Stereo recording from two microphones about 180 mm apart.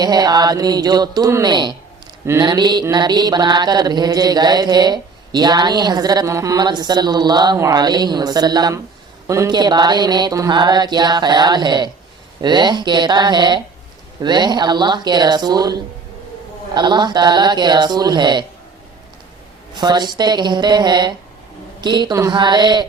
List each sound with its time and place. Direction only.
0.0 s mantra: 20° right (ahead or behind)
19.7 s mantra: 25° right (ahead or behind)